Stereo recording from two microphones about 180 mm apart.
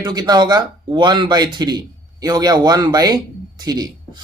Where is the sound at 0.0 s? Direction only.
25° right (ahead or behind).